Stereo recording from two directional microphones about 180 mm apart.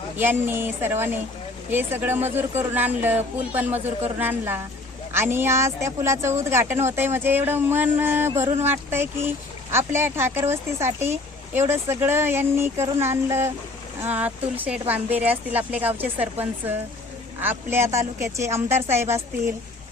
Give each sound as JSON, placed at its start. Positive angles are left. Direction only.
{"t": 0.2, "sound": "speech", "side_deg": -10}